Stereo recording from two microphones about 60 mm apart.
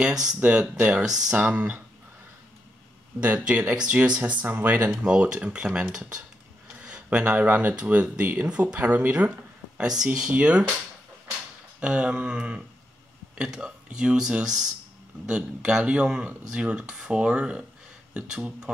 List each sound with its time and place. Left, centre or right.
0.4 s speech: right
1.0 s speech: centre
1.4 s speech: right
3.3 s speech: centre
5.0 s speech: centre
11.8 s speech: centre